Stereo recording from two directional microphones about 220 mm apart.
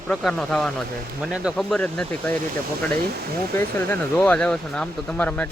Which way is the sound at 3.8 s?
10° left (ahead or behind).